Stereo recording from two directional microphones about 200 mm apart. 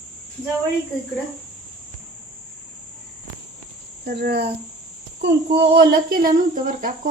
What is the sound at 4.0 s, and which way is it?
Speech, 55° right (ahead or behind).